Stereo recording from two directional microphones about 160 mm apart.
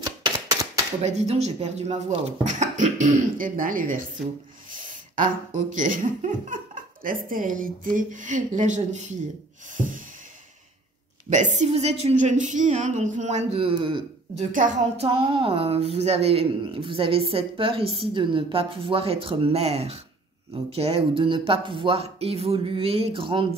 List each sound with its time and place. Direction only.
0.0 s typewriter: 25° right (ahead or behind)
1.0 s a woman's voice: 40° right (ahead or behind); by 4.0 s 60° right (ahead or behind)
4.7 s a sound: 55° right (ahead or behind)
5.8 s speech: 55° right (ahead or behind)
11.2 s a woman's voice: 45° right (ahead or behind); by 14.0 s 30° right (ahead or behind)
14.5 s speech: 55° right (ahead or behind); by 23.4 s 35° right (ahead or behind)